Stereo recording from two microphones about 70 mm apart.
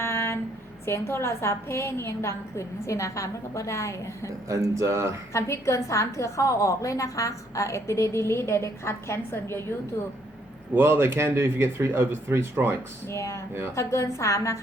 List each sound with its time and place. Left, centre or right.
0.0 s a sound: left
0.9 s a woman's voice: left
4.4 s speech: right
5.3 s a woman's voice: left
10.8 s speech: right
13.1 s a woman's voice: left